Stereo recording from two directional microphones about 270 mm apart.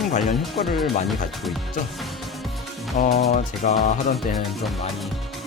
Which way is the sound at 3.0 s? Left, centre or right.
Left.